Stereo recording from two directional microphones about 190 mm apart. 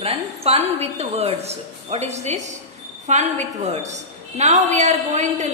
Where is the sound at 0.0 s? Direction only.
30° right (ahead or behind).